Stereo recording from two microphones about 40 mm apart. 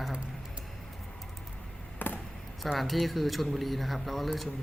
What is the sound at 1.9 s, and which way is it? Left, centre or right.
Chop, left.